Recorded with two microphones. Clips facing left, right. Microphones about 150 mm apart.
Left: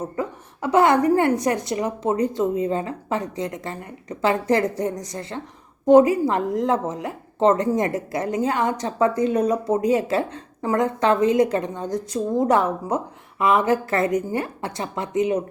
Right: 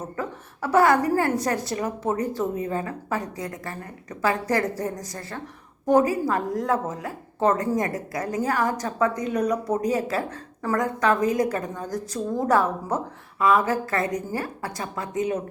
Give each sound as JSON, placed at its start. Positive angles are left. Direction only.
{"t": 0.2, "sound": "a woman's voice", "side_deg": 20}